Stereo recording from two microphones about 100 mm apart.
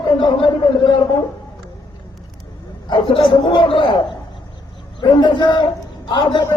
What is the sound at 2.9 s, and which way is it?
Speech, 60° left (ahead or behind).